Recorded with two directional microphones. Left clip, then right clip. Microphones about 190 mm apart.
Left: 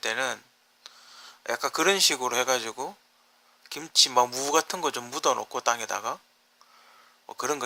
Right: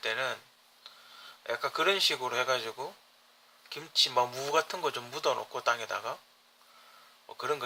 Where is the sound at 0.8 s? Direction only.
45° left (ahead or behind).